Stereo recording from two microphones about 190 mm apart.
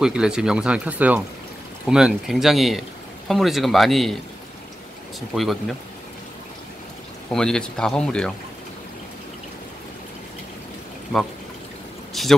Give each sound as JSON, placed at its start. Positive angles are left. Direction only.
{"t": 0.0, "sound": "speech", "side_deg": -5}
{"t": 5.3, "sound": "speech", "side_deg": 0}
{"t": 7.2, "sound": "speech", "side_deg": 5}
{"t": 12.1, "sound": "speech", "side_deg": 0}